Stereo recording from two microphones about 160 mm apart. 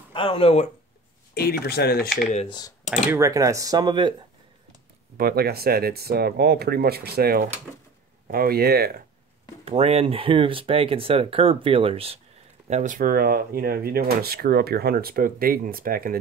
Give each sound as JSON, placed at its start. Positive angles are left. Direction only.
{"t": 0.1, "sound": "speech", "side_deg": 35}
{"t": 1.3, "sound": "speech", "side_deg": 80}
{"t": 2.3, "sound": "speech", "side_deg": 30}
{"t": 2.9, "sound": "speech", "side_deg": -15}
{"t": 5.1, "sound": "speech", "side_deg": -75}
{"t": 9.7, "sound": "speech", "side_deg": -40}
{"t": 12.6, "sound": "speech", "side_deg": -50}